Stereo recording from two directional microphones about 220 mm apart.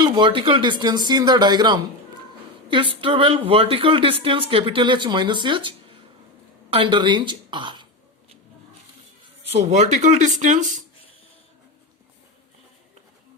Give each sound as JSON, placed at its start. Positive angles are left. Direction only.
{"t": 0.0, "sound": "speech", "side_deg": -20}
{"t": 6.7, "sound": "speech", "side_deg": -20}
{"t": 9.5, "sound": "speech", "side_deg": -30}